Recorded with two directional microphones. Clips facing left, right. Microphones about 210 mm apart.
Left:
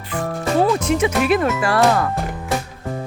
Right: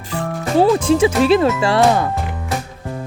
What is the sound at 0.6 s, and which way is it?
Speech, 30° right (ahead or behind).